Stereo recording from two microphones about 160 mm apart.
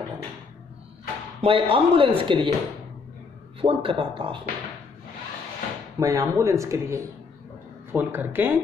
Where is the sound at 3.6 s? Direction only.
35° right (ahead or behind).